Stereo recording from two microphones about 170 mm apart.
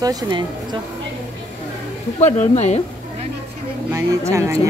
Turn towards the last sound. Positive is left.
turn(degrees=-15)  # may be behind; listen again after turning